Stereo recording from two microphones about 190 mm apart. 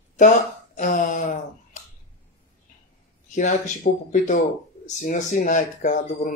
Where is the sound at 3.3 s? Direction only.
40° left (ahead or behind).